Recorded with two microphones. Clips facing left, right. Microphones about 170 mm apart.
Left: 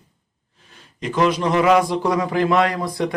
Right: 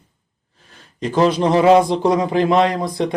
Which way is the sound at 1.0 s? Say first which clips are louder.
Right 3 dB; 35° right (ahead or behind).